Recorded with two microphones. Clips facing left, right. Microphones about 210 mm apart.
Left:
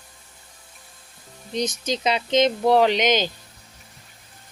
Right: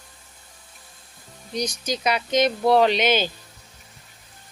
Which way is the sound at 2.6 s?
15° left (ahead or behind).